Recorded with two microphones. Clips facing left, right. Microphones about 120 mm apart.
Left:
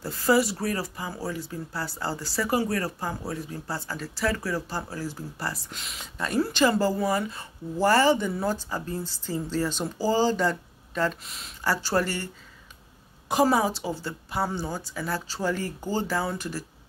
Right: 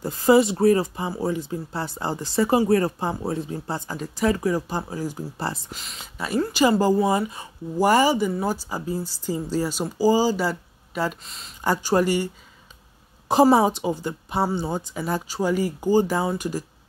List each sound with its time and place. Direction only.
0.0 s speech: 20° right (ahead or behind)
5.7 s speech: centre (ahead or behind)
11.2 s speech: centre (ahead or behind)
11.6 s speech: 20° right (ahead or behind)
13.3 s speech: 30° right (ahead or behind)